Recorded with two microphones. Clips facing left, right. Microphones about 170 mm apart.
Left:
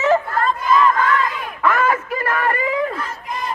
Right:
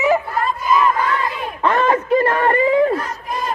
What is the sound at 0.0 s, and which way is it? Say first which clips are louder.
Chatter: even; 15° right (ahead or behind).